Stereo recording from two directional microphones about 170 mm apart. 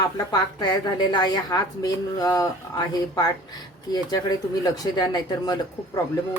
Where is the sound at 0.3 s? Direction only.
25° left (ahead or behind).